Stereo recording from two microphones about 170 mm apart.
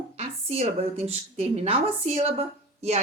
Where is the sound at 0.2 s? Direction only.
35° right (ahead or behind).